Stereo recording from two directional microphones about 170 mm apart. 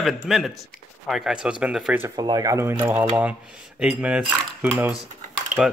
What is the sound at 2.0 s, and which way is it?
Speech, 25° right (ahead or behind).